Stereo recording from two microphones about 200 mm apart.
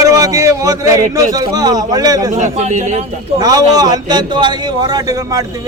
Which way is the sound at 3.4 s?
20° right (ahead or behind).